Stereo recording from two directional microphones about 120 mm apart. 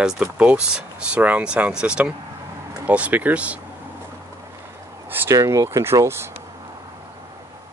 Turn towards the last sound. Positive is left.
turn(degrees=-20)  # may be behind; listen again after turning